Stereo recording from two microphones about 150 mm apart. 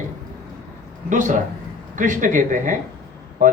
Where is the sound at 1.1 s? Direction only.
60° right (ahead or behind).